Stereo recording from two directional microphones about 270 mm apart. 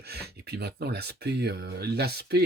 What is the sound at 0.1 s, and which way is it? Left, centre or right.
Speech, right.